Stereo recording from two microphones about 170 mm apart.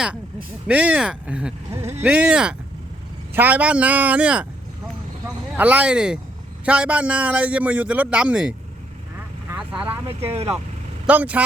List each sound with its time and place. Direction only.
0.7 s speech: 5° right (ahead or behind)
5.5 s speech: 10° right (ahead or behind)
9.5 s vehicle: 5° right (ahead or behind)
10.1 s speech: 35° right (ahead or behind)
11.0 s speech: 10° right (ahead or behind)